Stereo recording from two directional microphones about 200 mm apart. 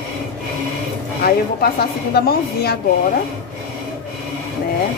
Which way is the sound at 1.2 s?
50° left (ahead or behind).